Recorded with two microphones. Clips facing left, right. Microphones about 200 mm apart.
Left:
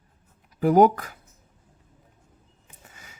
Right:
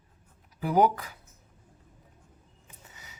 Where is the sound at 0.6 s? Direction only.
50° left (ahead or behind).